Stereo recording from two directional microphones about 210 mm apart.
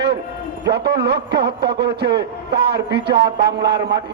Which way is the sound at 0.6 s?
50° right (ahead or behind).